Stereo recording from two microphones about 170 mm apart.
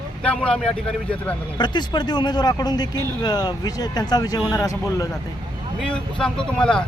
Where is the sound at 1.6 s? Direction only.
25° left (ahead or behind).